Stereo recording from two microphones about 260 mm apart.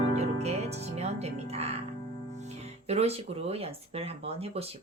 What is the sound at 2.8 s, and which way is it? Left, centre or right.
Speech, right.